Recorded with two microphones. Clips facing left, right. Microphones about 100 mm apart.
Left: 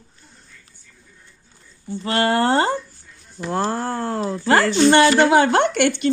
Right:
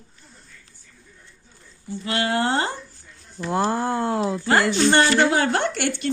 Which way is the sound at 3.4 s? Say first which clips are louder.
Even; 5° right (ahead or behind).